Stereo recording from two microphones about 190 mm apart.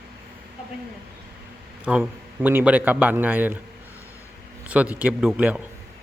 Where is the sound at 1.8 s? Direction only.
5° right (ahead or behind).